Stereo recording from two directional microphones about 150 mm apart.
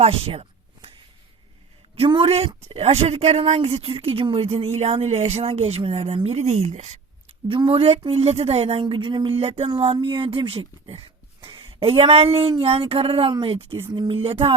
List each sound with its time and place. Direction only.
0.0 s speech: 40° right (ahead or behind)
2.0 s speech: 40° right (ahead or behind)
7.4 s speech: 35° right (ahead or behind)